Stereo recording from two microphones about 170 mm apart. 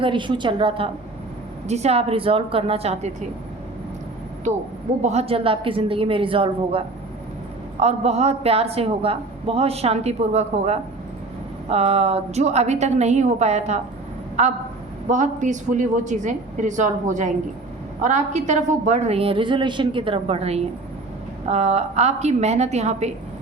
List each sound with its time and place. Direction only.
0.0 s a woman's voice: 30° right (ahead or behind)
5.0 s a man's voice: 35° right (ahead or behind)